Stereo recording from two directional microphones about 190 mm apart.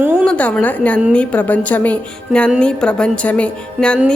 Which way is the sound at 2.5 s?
5° left (ahead or behind).